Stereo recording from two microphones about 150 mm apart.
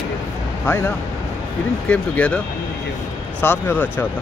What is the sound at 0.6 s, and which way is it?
Speech, 15° left (ahead or behind).